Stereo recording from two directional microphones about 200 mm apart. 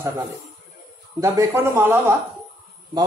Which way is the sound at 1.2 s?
15° right (ahead or behind).